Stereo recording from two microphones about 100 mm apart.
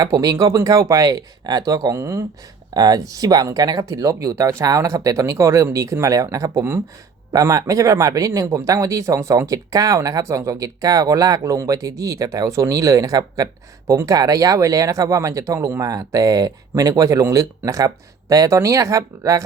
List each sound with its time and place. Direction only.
0.0 s speech: 35° right (ahead or behind)
2.7 s speech: 40° right (ahead or behind)